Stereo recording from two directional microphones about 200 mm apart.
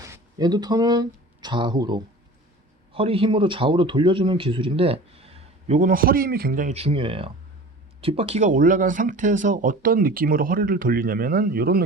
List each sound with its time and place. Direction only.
0.0 s a man's voice: 20° right (ahead or behind); by 11.8 s 50° right (ahead or behind)